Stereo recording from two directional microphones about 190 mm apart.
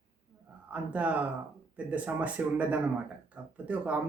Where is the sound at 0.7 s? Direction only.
10° right (ahead or behind).